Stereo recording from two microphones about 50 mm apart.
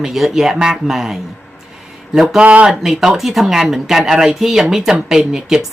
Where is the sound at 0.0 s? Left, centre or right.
Centre.